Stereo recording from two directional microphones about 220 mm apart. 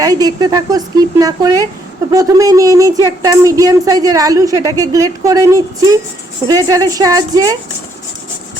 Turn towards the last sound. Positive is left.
turn(degrees=-15)  # may be behind; listen again after turning